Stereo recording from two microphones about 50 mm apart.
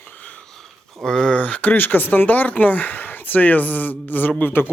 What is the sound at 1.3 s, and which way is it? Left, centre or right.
Speech, left.